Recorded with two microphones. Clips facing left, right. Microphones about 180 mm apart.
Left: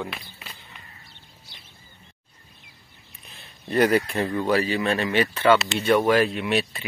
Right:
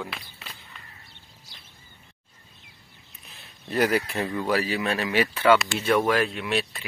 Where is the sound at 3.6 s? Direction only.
Centre (ahead or behind).